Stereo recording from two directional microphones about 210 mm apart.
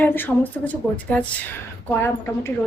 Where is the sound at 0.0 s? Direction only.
10° left (ahead or behind).